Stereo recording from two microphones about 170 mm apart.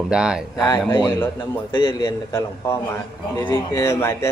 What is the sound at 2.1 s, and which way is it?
A man's voice, 15° left (ahead or behind).